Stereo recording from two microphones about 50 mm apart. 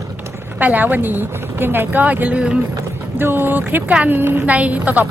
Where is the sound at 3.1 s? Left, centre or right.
Right.